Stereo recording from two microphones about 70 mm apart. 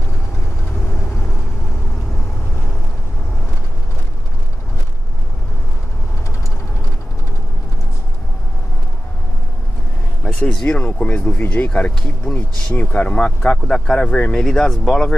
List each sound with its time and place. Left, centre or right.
10.2 s speech: centre